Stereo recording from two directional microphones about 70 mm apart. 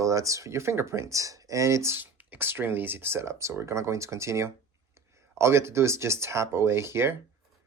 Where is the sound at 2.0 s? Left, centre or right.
Right.